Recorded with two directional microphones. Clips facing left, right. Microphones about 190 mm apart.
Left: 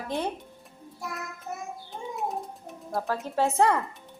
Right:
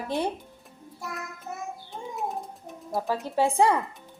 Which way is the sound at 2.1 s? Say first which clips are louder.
Left 1 dB; centre (ahead or behind).